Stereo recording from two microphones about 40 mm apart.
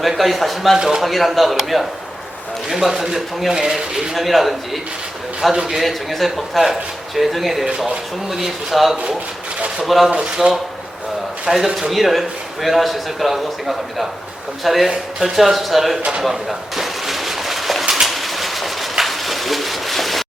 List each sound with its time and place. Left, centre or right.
0.0 s a man's voice: centre
0.8 s speech: centre
1.0 s a man's voice: centre
4.1 s a man's voice: centre
10.4 s speech: right
11.4 s a man's voice: centre
16.2 s a sound: centre